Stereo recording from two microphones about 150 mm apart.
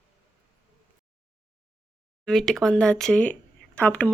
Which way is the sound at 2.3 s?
Centre (ahead or behind).